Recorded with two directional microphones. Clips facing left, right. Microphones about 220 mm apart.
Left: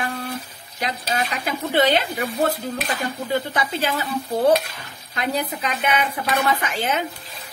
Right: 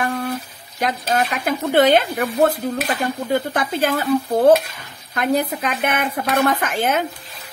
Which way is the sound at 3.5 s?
50° right (ahead or behind).